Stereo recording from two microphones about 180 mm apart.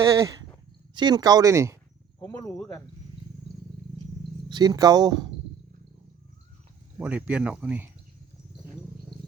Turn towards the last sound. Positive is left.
turn(degrees=-10)  # may be behind; listen again after turning